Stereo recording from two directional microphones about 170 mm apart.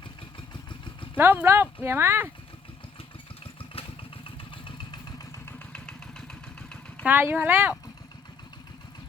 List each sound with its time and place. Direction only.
1.1 s speech: 10° right (ahead or behind)
3.4 s vehicle: 35° left (ahead or behind)
4.5 s motorcycle: 30° left (ahead or behind)
5.5 s vehicle: 5° left (ahead or behind)
7.0 s speech: 10° right (ahead or behind)